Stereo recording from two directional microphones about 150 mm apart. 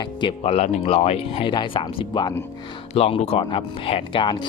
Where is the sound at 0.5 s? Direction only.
50° left (ahead or behind); by 2.3 s 35° left (ahead or behind).